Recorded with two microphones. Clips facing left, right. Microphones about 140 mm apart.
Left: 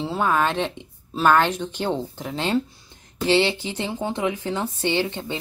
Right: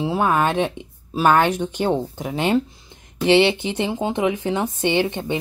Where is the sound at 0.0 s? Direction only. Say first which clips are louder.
Right 3 dB; 15° right (ahead or behind).